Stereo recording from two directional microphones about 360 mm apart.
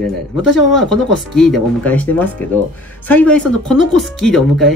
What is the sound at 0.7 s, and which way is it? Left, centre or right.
Speech, centre.